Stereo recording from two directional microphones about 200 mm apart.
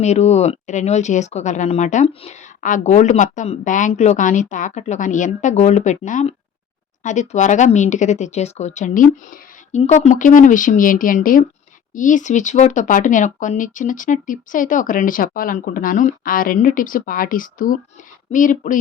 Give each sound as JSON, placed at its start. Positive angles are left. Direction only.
{"t": 0.0, "sound": "speech", "side_deg": 35}